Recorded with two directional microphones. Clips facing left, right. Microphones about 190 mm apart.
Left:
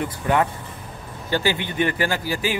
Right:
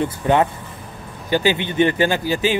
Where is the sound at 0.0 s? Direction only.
25° right (ahead or behind).